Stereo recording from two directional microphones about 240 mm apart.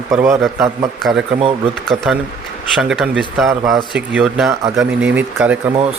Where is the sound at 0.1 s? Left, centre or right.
Centre.